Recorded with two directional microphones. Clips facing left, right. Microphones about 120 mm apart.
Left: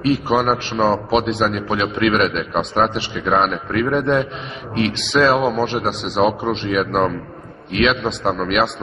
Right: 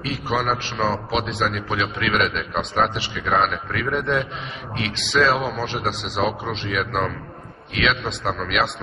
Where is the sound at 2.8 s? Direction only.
30° left (ahead or behind).